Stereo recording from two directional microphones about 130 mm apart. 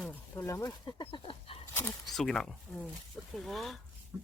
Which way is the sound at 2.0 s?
5° left (ahead or behind).